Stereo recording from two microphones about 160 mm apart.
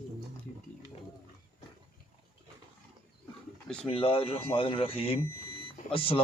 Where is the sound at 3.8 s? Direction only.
35° left (ahead or behind).